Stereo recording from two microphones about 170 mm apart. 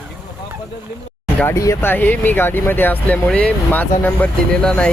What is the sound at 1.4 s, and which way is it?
Speech, 15° left (ahead or behind).